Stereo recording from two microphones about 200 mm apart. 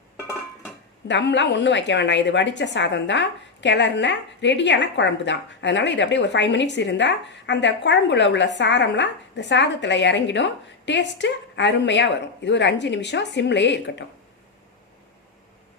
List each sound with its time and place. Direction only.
1.0 s a woman's voice: 60° left (ahead or behind)